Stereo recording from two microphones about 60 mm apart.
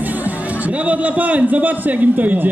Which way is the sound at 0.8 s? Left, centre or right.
Right.